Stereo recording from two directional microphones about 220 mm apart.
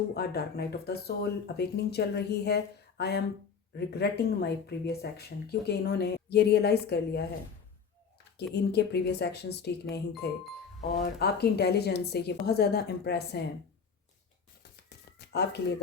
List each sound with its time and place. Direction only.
0.1 s speech: 45° left (ahead or behind)
8.5 s speech: 50° left (ahead or behind)
14.6 s a sound: 50° left (ahead or behind)